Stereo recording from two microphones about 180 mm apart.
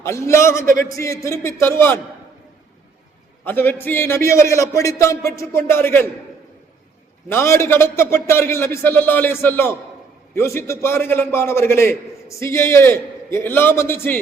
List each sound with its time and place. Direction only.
0.0 s a man's voice: 15° left (ahead or behind)
0.6 s speech: 50° right (ahead or behind)
0.9 s a man's voice: 15° left (ahead or behind)
3.4 s a man's voice: 10° left (ahead or behind)
7.3 s a man's voice: 15° left (ahead or behind)